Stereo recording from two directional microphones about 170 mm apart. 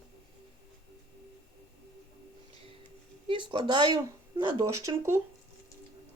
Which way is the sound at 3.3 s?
30° right (ahead or behind).